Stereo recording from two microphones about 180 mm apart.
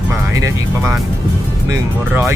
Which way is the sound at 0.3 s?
15° right (ahead or behind).